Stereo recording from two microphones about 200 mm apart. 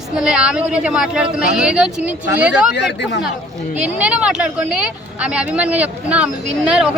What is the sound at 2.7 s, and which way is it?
Speech, 60° left (ahead or behind).